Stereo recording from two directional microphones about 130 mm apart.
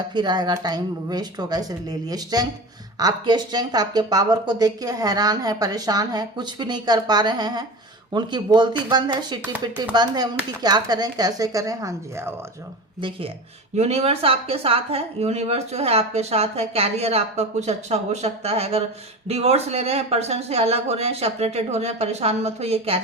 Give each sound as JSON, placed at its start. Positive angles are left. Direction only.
{"t": 0.1, "sound": "speech", "side_deg": -35}
{"t": 13.0, "sound": "speech", "side_deg": -40}
{"t": 13.7, "sound": "speech", "side_deg": -55}